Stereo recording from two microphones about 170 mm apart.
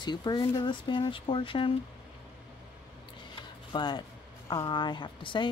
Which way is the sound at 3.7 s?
25° left (ahead or behind).